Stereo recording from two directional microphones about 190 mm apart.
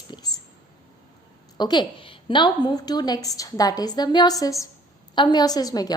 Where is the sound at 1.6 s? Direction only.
25° left (ahead or behind).